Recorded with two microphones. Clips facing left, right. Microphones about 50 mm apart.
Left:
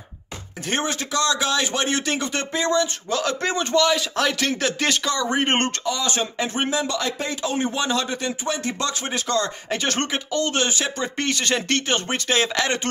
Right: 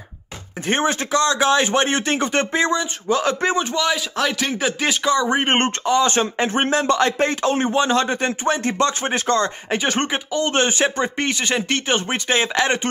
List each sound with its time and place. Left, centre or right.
0.7 s a man's voice: right
3.8 s speech: centre; by 5.7 s right
5.9 s speech: right
9.7 s a man's voice: right
11.2 s a man's voice: centre